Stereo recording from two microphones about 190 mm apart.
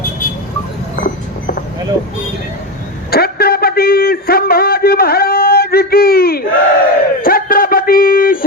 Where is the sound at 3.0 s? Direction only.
55° left (ahead or behind).